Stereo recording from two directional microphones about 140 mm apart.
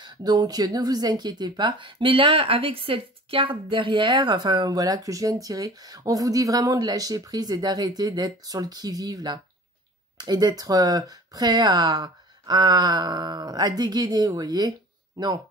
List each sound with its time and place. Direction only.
0.0 s speech: 30° right (ahead or behind)